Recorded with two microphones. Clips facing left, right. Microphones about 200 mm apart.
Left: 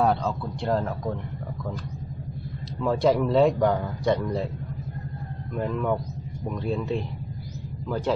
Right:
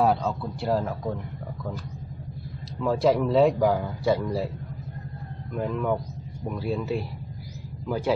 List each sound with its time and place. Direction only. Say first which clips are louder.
0.0 s a man's voice: even; 5° right (ahead or behind)
2.8 s a man's voice: even; centre (ahead or behind)
5.5 s a man's voice: even; centre (ahead or behind)